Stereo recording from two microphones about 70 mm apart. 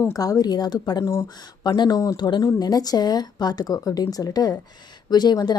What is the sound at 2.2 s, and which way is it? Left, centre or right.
Speech, left.